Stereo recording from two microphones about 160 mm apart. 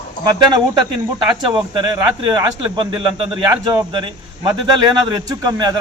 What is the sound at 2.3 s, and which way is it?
A man's voice, 30° right (ahead or behind).